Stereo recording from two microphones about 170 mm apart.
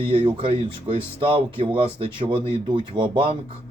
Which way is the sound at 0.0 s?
30° right (ahead or behind).